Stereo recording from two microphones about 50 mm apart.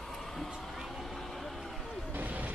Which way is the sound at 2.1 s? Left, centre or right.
Right.